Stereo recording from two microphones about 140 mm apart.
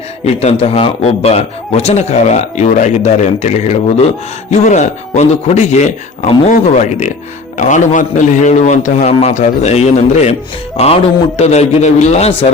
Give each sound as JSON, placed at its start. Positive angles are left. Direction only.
{"t": 0.3, "sound": "a man's voice", "side_deg": 50}